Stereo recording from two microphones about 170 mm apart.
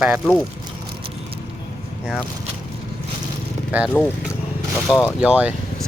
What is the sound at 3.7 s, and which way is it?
Speech, 10° right (ahead or behind).